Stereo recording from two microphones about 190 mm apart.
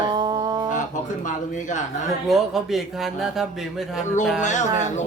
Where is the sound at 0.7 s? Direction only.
40° left (ahead or behind).